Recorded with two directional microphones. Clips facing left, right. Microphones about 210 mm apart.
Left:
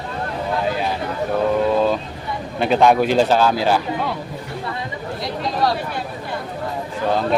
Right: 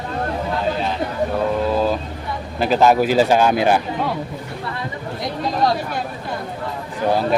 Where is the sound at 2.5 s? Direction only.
Centre (ahead or behind); by 3.8 s 20° right (ahead or behind).